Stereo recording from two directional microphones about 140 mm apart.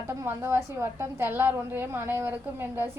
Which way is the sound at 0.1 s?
15° right (ahead or behind).